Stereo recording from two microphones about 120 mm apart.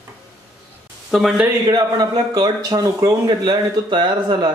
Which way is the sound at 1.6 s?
35° right (ahead or behind).